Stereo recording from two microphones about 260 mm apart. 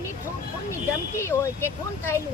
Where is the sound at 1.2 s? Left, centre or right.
Centre.